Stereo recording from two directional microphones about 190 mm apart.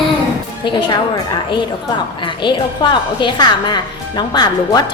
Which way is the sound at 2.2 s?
25° left (ahead or behind).